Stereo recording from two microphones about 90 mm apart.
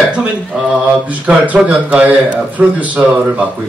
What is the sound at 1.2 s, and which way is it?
Speech, 15° right (ahead or behind).